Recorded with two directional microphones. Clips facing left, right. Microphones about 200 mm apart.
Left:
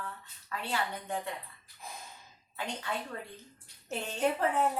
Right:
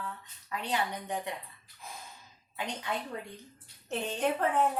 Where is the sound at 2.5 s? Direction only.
15° right (ahead or behind).